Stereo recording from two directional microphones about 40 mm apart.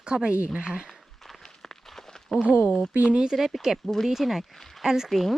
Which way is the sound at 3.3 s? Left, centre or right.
Centre.